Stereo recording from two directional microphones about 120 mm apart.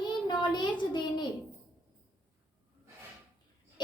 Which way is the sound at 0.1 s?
40° left (ahead or behind).